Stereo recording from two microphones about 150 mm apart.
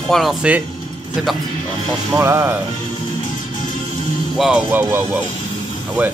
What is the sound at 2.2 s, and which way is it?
Speech, 20° right (ahead or behind).